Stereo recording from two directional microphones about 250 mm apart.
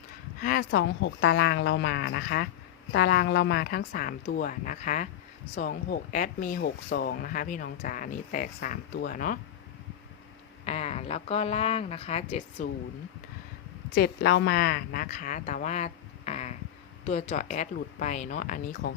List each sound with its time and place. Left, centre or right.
0.4 s speech: left
10.7 s speech: left
13.9 s a woman's voice: left